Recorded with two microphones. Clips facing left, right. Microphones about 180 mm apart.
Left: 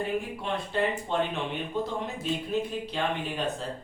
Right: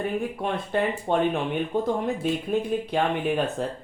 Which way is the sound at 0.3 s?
55° right (ahead or behind).